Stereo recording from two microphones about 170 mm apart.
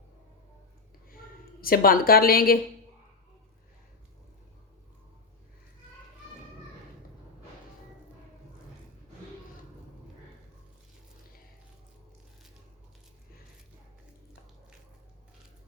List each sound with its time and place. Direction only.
1.6 s a woman's voice: 60° left (ahead or behind)